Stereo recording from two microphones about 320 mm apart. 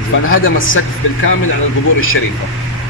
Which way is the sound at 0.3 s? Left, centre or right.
Left.